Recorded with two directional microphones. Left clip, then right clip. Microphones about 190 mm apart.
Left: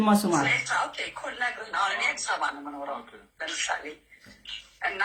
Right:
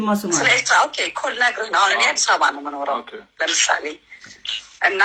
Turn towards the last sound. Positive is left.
turn(degrees=-45)  # may be behind; listen again after turning